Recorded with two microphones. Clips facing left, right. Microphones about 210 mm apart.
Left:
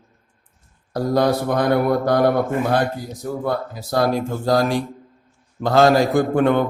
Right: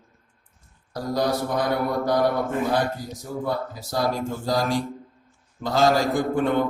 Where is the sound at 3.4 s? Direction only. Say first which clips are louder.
Left 2 dB; 60° left (ahead or behind).